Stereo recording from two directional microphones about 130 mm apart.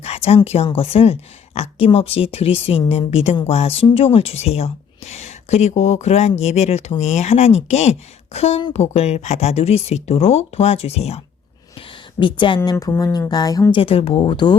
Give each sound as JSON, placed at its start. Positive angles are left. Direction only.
{"t": 0.0, "sound": "a sound", "side_deg": 50}
{"t": 0.4, "sound": "a woman's voice", "side_deg": 50}
{"t": 12.2, "sound": "a woman's voice", "side_deg": 40}
{"t": 12.7, "sound": "speech", "side_deg": 25}
{"t": 13.7, "sound": "speech", "side_deg": 45}